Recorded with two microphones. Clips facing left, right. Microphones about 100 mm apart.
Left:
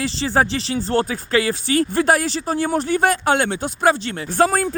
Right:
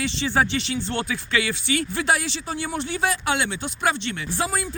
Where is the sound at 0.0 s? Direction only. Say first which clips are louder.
Left 3 dB; 35° left (ahead or behind).